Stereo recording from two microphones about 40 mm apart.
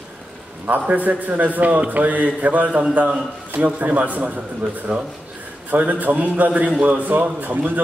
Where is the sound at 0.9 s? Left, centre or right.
Right.